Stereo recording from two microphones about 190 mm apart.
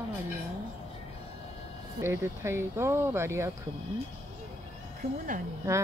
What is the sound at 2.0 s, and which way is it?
Speech, 15° right (ahead or behind).